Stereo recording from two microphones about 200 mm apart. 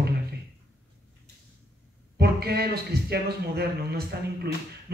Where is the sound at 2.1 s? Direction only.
50° right (ahead or behind).